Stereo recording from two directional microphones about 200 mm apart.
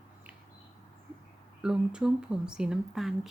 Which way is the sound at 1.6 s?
5° right (ahead or behind).